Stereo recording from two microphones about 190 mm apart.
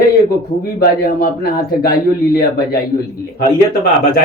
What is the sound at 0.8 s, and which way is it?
Speech, 55° left (ahead or behind).